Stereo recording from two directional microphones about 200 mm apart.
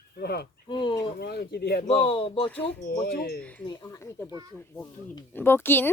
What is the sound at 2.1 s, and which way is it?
Speech, 25° left (ahead or behind).